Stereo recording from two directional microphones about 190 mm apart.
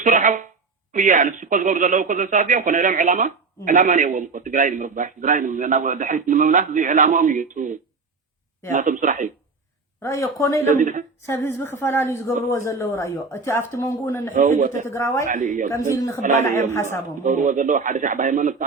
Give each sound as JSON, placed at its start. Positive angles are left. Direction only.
{"t": 0.0, "sound": "speech", "side_deg": -40}
{"t": 10.0, "sound": "speech", "side_deg": 15}
{"t": 10.7, "sound": "speech", "side_deg": -40}
{"t": 11.3, "sound": "speech", "side_deg": 15}
{"t": 15.3, "sound": "speech", "side_deg": -45}
{"t": 16.0, "sound": "speech", "side_deg": 15}
{"t": 16.2, "sound": "speech", "side_deg": -40}